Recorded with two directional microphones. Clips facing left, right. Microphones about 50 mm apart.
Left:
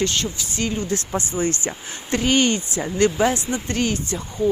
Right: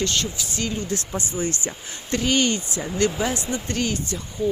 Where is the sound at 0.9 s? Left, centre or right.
Left.